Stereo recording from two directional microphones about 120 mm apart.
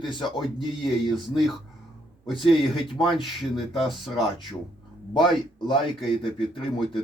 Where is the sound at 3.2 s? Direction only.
Centre (ahead or behind).